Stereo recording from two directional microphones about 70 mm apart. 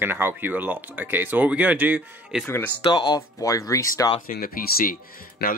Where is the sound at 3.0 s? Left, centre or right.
Left.